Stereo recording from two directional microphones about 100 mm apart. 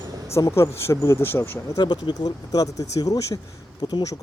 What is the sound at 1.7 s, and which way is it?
Speech, 45° left (ahead or behind).